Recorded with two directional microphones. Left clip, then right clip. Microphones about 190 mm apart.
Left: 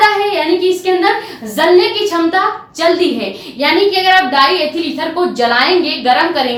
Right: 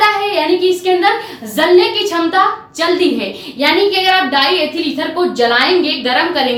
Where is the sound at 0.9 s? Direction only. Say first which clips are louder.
Right 1 dB; 10° left (ahead or behind).